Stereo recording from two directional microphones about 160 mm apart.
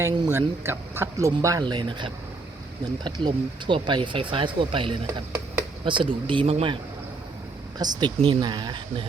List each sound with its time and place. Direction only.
0.0 s speech: 15° right (ahead or behind); by 6.7 s 35° right (ahead or behind)
7.8 s speech: 25° right (ahead or behind)